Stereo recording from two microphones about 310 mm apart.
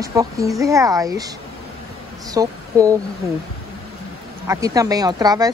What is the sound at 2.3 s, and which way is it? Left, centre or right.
Speech, centre.